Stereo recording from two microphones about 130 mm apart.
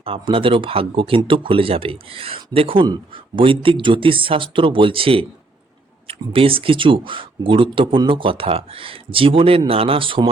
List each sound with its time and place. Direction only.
0.0 s speech: 45° right (ahead or behind)